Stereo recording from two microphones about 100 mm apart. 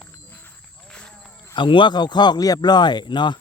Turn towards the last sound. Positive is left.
turn(degrees=50)  # may be behind; listen again after turning